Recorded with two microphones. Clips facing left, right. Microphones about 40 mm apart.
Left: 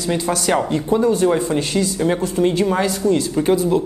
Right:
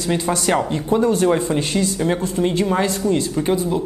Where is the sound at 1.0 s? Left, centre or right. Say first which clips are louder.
Left 1 dB; right.